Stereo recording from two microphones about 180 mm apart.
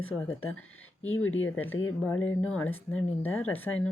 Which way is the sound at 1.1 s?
90° left.